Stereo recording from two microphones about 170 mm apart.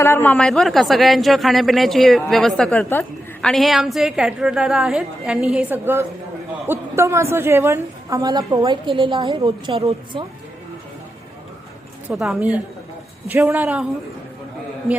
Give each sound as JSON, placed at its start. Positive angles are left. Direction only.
{"t": 0.0, "sound": "a woman's voice", "side_deg": 10}
{"t": 12.0, "sound": "speech", "side_deg": 0}